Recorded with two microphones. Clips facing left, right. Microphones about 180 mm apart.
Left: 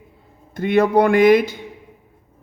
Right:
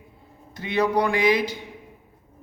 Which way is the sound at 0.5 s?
50° left (ahead or behind).